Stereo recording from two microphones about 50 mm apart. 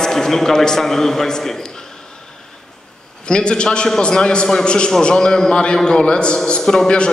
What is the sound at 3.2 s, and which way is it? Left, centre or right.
A man's voice, centre.